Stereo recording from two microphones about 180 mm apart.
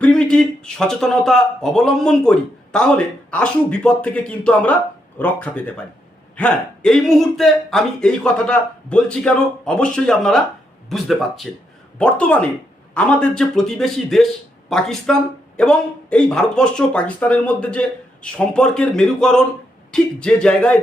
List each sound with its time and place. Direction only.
0.0 s speech: 5° left (ahead or behind)